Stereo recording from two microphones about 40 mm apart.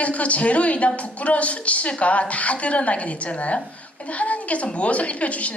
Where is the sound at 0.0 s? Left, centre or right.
Left.